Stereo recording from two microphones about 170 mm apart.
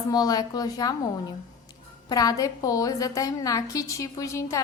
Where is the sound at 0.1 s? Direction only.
20° left (ahead or behind).